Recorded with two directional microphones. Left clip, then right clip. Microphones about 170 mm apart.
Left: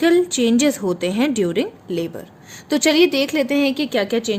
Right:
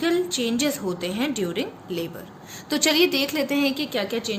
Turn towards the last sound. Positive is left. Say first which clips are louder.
# left 6 dB
turn(degrees=50)  # may be behind; listen again after turning